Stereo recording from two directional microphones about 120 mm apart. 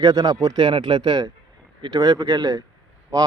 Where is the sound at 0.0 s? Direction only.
30° right (ahead or behind).